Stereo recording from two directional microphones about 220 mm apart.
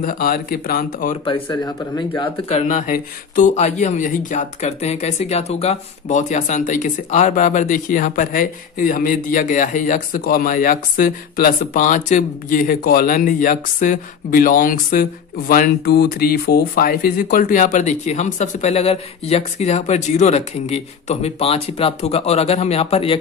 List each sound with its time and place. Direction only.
0.0 s speech: 40° left (ahead or behind)
1.2 s speech: 20° left (ahead or behind)